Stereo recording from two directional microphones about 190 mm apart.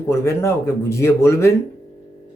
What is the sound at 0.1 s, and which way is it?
Speech, 15° left (ahead or behind).